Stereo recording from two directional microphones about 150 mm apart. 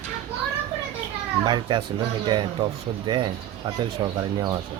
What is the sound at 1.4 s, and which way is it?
Speech, 30° right (ahead or behind).